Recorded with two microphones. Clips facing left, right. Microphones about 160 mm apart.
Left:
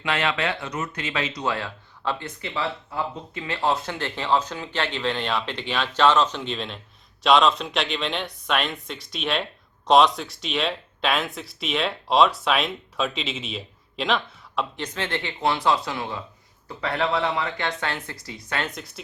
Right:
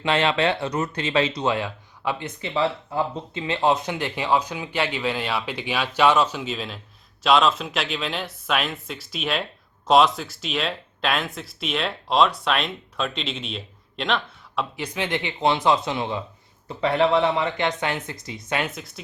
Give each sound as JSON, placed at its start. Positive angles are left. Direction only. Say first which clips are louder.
{"t": 0.0, "sound": "speech", "louder": "right 4 dB", "side_deg": -30}
{"t": 14.8, "sound": "speech", "louder": "right 2 dB", "side_deg": -15}
{"t": 18.7, "sound": "speech", "louder": "even", "side_deg": 0}